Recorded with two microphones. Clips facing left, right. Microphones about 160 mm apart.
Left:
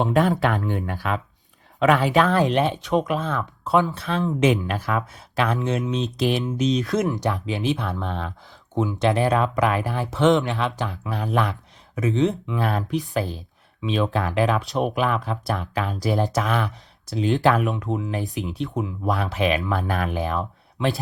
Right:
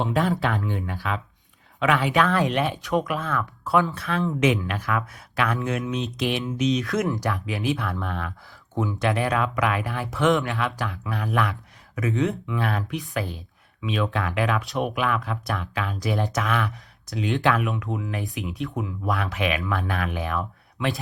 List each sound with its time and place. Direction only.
0.0 s speech: 50° left (ahead or behind)
1.8 s speech: 40° left (ahead or behind); by 4.4 s 20° left (ahead or behind)
4.4 s speech: 35° left (ahead or behind)
6.8 s speech: 20° left (ahead or behind)
12.5 s speech: 35° left (ahead or behind)
17.9 s speech: 20° left (ahead or behind)
18.2 s speech: 35° left (ahead or behind)